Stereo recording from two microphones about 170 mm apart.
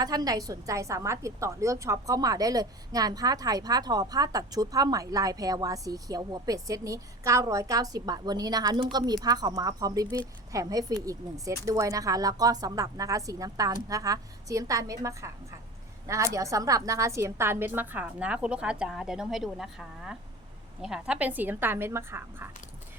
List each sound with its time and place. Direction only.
0.0 s a woman's voice: 20° right (ahead or behind)